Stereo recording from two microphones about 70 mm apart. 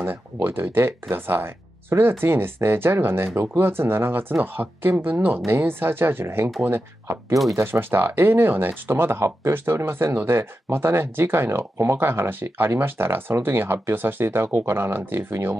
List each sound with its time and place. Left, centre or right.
0.0 s speech: right
7.5 s speech: right